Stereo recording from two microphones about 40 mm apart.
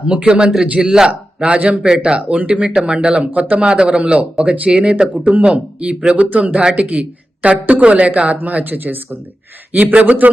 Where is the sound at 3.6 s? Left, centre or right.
Right.